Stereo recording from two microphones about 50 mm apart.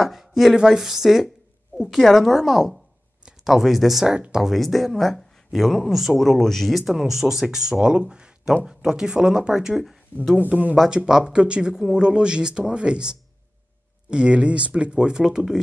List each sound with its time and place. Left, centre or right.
0.0 s speech: centre
6.8 s speech: centre
10.1 s speech: left
11.1 s speech: centre